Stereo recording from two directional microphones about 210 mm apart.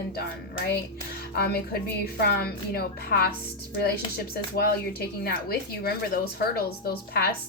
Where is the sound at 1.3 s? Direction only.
45° left (ahead or behind).